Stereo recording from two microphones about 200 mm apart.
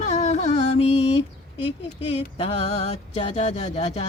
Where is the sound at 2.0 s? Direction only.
30° left (ahead or behind).